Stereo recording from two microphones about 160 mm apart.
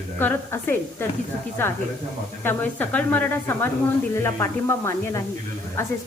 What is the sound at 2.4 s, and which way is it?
A woman's voice, 10° left (ahead or behind).